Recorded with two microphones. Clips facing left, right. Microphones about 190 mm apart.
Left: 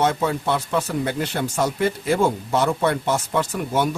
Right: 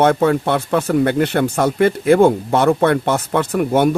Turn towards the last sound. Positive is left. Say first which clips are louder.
# right 6 dB
turn(degrees=-60)  # may be behind; listen again after turning